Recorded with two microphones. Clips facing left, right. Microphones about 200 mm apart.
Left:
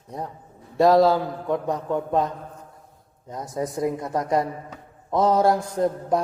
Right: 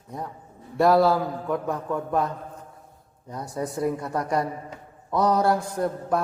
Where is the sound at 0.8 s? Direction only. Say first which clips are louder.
Left 2 dB; 20° left (ahead or behind).